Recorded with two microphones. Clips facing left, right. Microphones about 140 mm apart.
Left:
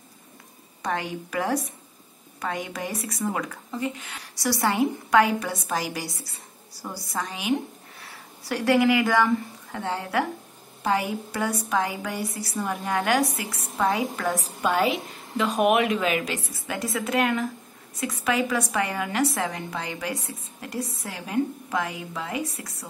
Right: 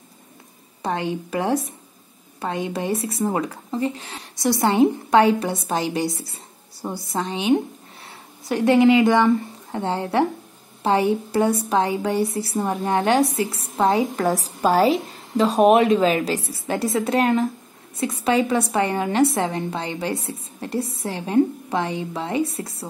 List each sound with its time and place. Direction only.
0.8 s a woman's voice: 25° right (ahead or behind)